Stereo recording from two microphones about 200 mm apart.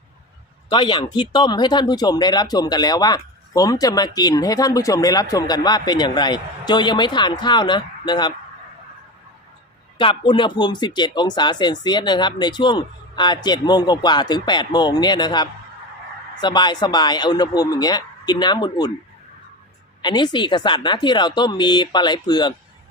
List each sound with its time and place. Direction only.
0.7 s speech: 20° left (ahead or behind)
10.0 s speech: 25° left (ahead or behind)
20.0 s speech: 20° left (ahead or behind)